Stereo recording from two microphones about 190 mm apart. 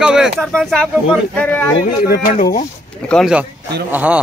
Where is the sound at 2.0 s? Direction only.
55° left (ahead or behind).